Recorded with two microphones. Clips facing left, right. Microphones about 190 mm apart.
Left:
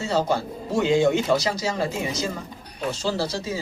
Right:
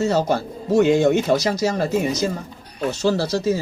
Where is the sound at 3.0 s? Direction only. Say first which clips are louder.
Right 8 dB; 45° right (ahead or behind).